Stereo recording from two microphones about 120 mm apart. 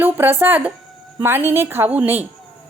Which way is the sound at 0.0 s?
15° right (ahead or behind).